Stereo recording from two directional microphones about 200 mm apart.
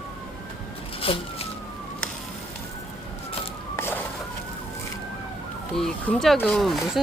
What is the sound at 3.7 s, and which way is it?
Vehicle, 10° left (ahead or behind).